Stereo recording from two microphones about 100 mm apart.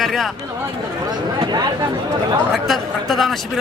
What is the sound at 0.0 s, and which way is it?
Speech, centre (ahead or behind).